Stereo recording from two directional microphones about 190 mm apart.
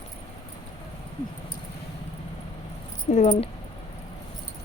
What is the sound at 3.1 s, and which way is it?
Speech, 35° left (ahead or behind).